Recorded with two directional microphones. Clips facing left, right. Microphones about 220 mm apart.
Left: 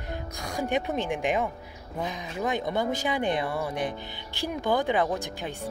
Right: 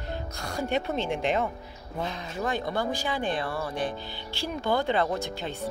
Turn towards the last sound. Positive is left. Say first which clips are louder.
# even
turn(degrees=15)  # may be behind; listen again after turning